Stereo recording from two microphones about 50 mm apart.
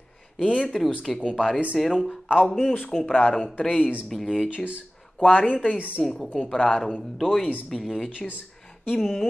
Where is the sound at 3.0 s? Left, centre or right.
Centre.